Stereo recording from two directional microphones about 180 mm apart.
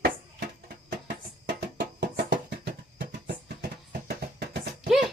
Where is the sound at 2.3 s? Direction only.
75° right (ahead or behind); by 4.6 s 60° right (ahead or behind).